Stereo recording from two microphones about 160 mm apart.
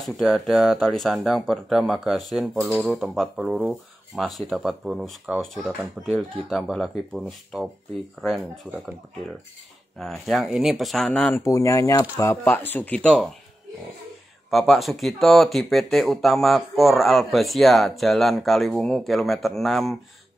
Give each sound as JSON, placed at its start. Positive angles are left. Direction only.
{"t": 0.0, "sound": "speech", "side_deg": 0}
{"t": 9.9, "sound": "speech", "side_deg": 0}
{"t": 11.4, "sound": "speech", "side_deg": 20}
{"t": 14.5, "sound": "speech", "side_deg": 0}